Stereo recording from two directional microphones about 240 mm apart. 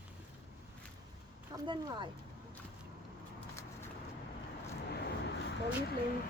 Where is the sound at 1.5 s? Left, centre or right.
Centre.